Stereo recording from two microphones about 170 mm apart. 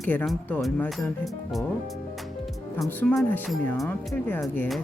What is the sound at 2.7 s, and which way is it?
Speech, 15° left (ahead or behind).